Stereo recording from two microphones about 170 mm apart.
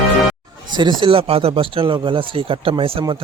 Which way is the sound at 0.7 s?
25° right (ahead or behind).